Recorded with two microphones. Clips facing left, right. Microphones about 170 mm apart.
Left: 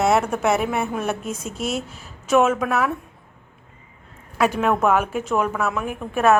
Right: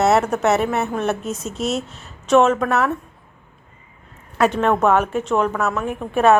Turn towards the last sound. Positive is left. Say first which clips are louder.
# right 3 dB
turn(degrees=-30)  # may be behind; listen again after turning